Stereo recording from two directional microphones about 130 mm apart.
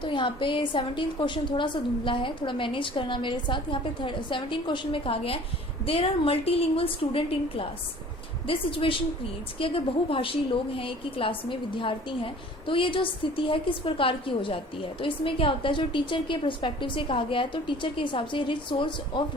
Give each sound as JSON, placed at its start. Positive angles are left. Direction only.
{"t": 0.0, "sound": "a woman's voice", "side_deg": 40}